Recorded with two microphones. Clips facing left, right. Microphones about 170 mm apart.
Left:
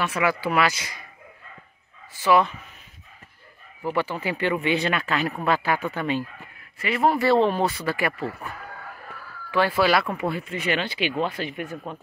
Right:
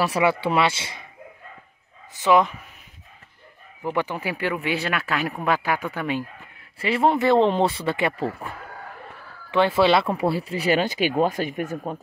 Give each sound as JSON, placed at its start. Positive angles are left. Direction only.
{"t": 0.0, "sound": "speech", "side_deg": -30}
{"t": 2.2, "sound": "speech", "side_deg": -20}
{"t": 3.8, "sound": "speech", "side_deg": -15}
{"t": 6.8, "sound": "speech", "side_deg": -30}